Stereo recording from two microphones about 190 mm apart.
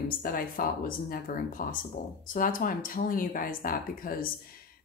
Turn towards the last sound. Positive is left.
turn(degrees=50)  # may be behind; listen again after turning